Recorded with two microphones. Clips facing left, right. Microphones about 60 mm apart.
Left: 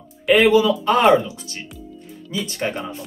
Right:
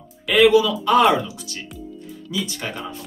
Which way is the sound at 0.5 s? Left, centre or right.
Left.